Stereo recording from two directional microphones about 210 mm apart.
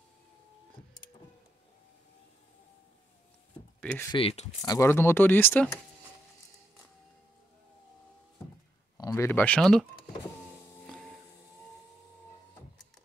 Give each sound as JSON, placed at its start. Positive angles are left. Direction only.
{"t": 3.8, "sound": "speech", "side_deg": 5}
{"t": 4.1, "sound": "speech", "side_deg": 25}
{"t": 4.6, "sound": "speech", "side_deg": 10}
{"t": 8.9, "sound": "speech", "side_deg": 15}